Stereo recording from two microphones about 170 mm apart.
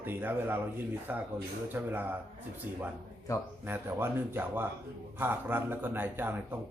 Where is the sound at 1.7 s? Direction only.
10° right (ahead or behind).